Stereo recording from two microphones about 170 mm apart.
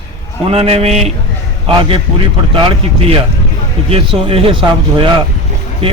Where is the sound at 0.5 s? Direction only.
35° right (ahead or behind).